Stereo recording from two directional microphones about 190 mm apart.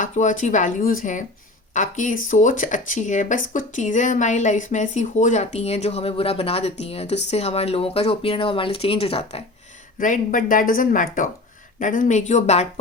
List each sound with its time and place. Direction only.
0.0 s speech: 40° left (ahead or behind)
10.0 s speech: 45° left (ahead or behind)